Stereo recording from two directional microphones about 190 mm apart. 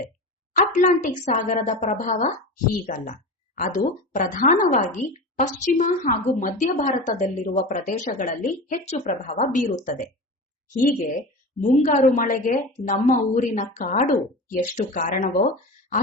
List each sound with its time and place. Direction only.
0.5 s a woman's voice: 45° left (ahead or behind)
11.6 s a woman's voice: 40° left (ahead or behind)